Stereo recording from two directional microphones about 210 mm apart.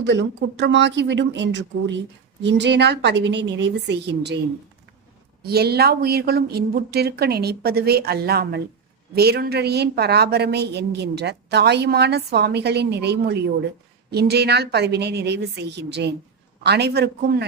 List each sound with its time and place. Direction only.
0.0 s speech: 60° right (ahead or behind)
5.4 s a woman's voice: 50° right (ahead or behind)